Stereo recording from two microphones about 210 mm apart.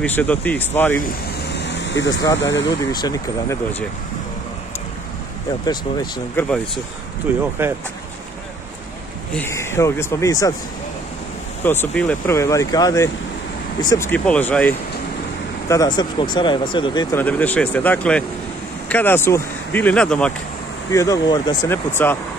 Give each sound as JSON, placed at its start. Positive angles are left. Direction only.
{"t": 0.0, "sound": "speech", "side_deg": 5}
{"t": 1.5, "sound": "air conditioning", "side_deg": 55}
{"t": 2.3, "sound": "speech", "side_deg": 60}
{"t": 2.9, "sound": "speech", "side_deg": 20}
{"t": 6.4, "sound": "speech", "side_deg": 10}
{"t": 7.6, "sound": "speech", "side_deg": -10}
{"t": 9.3, "sound": "speech", "side_deg": 10}
{"t": 11.6, "sound": "speech", "side_deg": 10}
{"t": 15.7, "sound": "speech", "side_deg": 20}
{"t": 17.2, "sound": "speech", "side_deg": 5}